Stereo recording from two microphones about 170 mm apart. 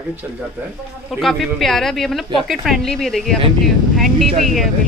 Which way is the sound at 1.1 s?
Centre (ahead or behind).